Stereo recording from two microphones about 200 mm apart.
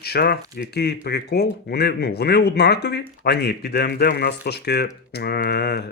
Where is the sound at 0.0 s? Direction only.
50° left (ahead or behind).